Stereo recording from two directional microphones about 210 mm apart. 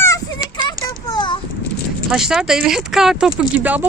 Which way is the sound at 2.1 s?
Centre (ahead or behind).